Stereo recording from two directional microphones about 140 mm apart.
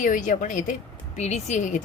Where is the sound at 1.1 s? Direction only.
55° left (ahead or behind).